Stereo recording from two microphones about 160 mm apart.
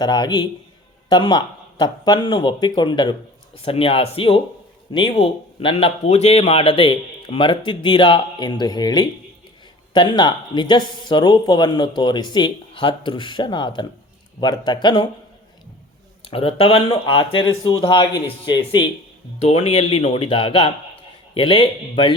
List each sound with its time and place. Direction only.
0.0 s speech: 25° left (ahead or behind)
16.3 s speech: 35° left (ahead or behind)
19.4 s speech: 40° left (ahead or behind)